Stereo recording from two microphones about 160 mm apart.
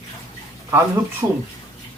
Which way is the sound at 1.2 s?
15° right (ahead or behind).